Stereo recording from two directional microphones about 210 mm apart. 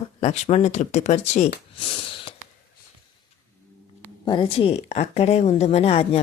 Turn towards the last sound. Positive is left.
turn(degrees=30)  # may be behind; listen again after turning